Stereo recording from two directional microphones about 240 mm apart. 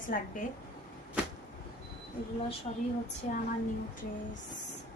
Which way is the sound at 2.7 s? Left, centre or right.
Left.